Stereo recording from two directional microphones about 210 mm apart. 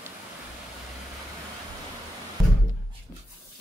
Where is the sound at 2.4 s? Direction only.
Centre (ahead or behind).